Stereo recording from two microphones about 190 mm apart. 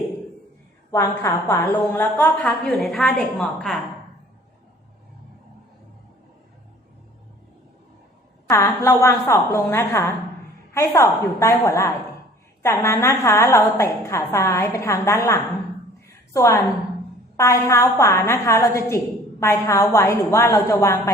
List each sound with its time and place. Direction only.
0.9 s a woman's voice: 15° left (ahead or behind)
8.4 s a woman's voice: 15° left (ahead or behind)